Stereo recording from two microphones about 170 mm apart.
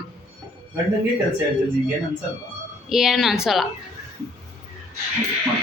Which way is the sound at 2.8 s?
Centre (ahead or behind).